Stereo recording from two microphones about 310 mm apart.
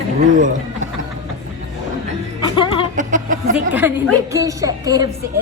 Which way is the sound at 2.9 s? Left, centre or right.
Right.